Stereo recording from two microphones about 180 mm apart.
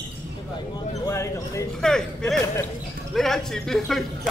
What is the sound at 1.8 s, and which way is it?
Speech, 5° left (ahead or behind).